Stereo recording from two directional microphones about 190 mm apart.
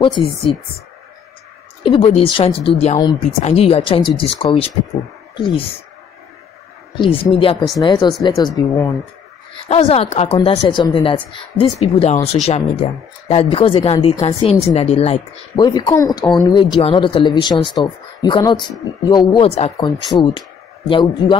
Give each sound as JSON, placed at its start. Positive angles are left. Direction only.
{"t": 0.0, "sound": "a woman's voice", "side_deg": 30}
{"t": 1.8, "sound": "a woman's voice", "side_deg": 30}
{"t": 7.0, "sound": "a woman's voice", "side_deg": 30}
{"t": 9.7, "sound": "a woman's voice", "side_deg": 30}